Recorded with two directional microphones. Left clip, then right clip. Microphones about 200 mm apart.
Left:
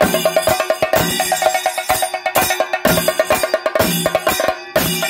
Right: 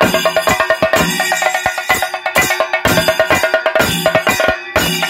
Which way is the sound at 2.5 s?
55° left (ahead or behind).